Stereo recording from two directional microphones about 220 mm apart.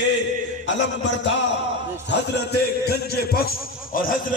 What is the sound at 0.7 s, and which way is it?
Speech, 55° left (ahead or behind).